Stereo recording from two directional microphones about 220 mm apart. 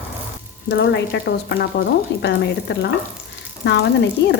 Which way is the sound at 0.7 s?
55° left (ahead or behind).